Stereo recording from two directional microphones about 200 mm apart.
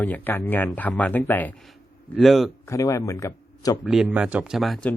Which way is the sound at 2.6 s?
15° left (ahead or behind).